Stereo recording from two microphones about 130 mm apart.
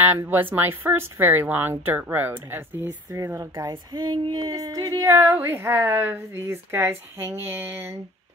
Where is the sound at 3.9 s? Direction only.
35° right (ahead or behind); by 7.9 s 15° right (ahead or behind).